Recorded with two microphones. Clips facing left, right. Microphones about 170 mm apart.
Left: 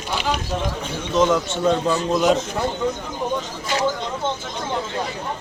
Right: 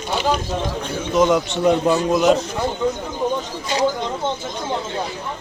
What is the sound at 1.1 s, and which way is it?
A man's voice, 10° right (ahead or behind).